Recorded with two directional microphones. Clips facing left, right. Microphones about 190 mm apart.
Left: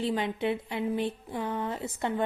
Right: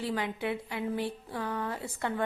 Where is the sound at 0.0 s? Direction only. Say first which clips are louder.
Left 4 dB; 25° left (ahead or behind).